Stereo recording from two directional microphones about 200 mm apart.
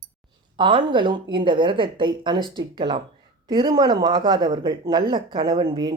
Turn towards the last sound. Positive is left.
turn(degrees=-20)  # may be behind; listen again after turning